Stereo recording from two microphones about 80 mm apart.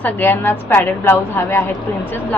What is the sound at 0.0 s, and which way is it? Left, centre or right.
A woman's voice, left.